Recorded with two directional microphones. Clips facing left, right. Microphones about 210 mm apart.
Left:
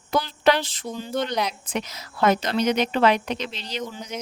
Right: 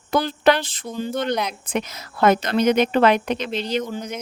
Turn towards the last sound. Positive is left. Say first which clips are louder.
# right 7 dB
turn(degrees=-55)  # may be behind; listen again after turning